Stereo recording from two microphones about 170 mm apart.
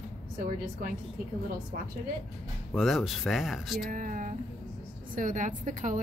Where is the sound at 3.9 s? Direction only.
50° right (ahead or behind).